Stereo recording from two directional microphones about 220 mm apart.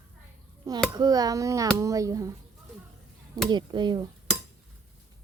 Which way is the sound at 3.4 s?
20° right (ahead or behind).